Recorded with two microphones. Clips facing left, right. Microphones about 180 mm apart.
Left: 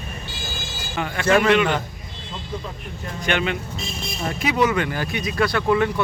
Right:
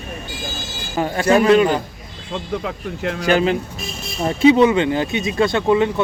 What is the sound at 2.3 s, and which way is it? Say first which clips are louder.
Speech: right 8 dB; 75° right (ahead or behind).